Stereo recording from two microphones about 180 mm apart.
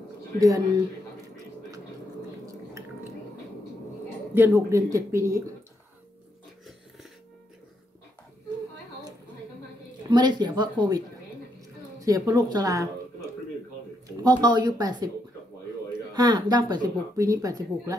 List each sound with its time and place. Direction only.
0.4 s speech: 20° right (ahead or behind)
2.4 s a sound: 15° right (ahead or behind)
4.3 s speech: 15° right (ahead or behind)
10.0 s speech: 25° right (ahead or behind)
12.0 s speech: 20° right (ahead or behind)
14.4 s speech: 25° right (ahead or behind)
16.1 s speech: 25° right (ahead or behind)